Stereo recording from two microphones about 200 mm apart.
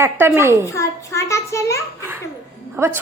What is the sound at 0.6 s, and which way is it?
A child's voice, 15° left (ahead or behind).